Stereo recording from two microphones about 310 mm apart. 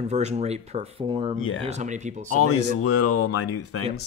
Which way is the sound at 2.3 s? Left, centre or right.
Left.